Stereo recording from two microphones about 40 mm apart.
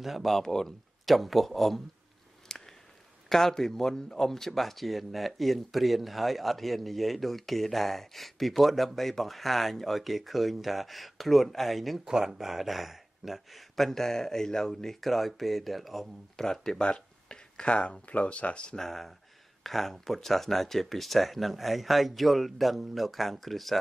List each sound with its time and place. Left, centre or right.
0.0 s speech: centre
2.4 s a sound: centre
3.3 s speech: centre
12.0 s speech: centre
16.3 s speech: centre
18.8 s speech: centre